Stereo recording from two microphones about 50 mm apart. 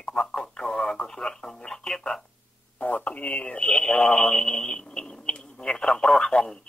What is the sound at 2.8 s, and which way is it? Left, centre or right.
Speech, left.